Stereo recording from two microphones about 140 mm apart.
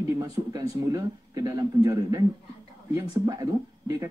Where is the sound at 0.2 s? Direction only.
25° right (ahead or behind).